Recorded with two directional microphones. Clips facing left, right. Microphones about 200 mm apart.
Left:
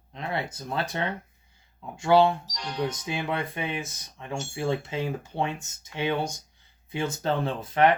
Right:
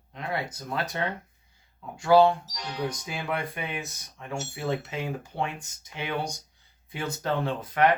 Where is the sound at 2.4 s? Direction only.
5° right (ahead or behind).